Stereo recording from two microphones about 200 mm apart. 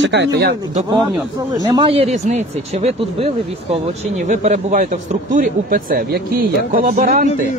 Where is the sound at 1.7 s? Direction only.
25° right (ahead or behind).